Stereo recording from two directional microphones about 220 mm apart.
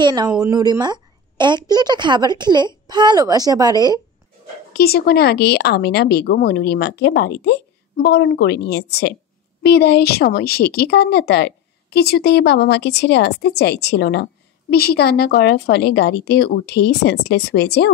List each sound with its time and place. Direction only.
0.0 s a woman's voice: 20° right (ahead or behind)
4.7 s a woman's voice: 45° left (ahead or behind)